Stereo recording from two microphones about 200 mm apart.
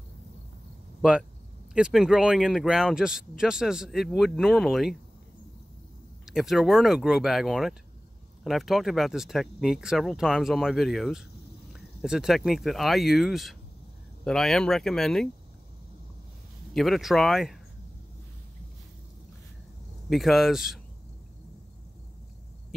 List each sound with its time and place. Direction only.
1.7 s speech: 5° right (ahead or behind)
6.2 s speech: centre (ahead or behind)
16.7 s speech: centre (ahead or behind)
20.1 s speech: centre (ahead or behind)